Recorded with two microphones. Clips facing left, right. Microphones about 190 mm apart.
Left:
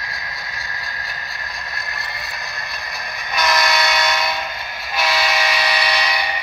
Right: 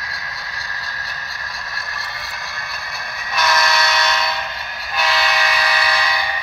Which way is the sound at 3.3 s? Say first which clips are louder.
Even; 15° left (ahead or behind).